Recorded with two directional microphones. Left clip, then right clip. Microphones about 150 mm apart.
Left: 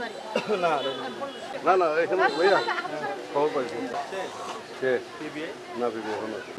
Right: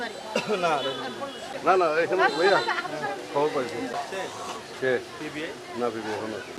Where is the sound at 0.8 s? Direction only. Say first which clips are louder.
Even; 15° left (ahead or behind).